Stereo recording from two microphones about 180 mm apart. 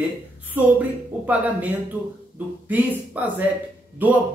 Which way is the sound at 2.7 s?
10° right (ahead or behind).